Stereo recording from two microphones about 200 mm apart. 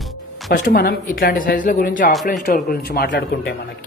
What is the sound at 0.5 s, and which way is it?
A woman's voice, 50° left (ahead or behind).